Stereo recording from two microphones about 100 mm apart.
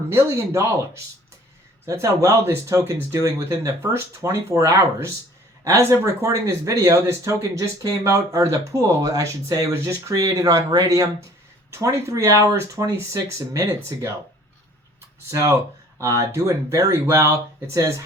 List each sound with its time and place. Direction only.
0.1 s speech: 25° right (ahead or behind)
1.9 s speech: 30° right (ahead or behind)
15.3 s speech: 30° right (ahead or behind)